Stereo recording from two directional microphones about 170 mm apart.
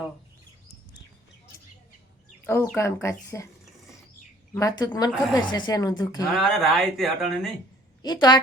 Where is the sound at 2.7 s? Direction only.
15° left (ahead or behind).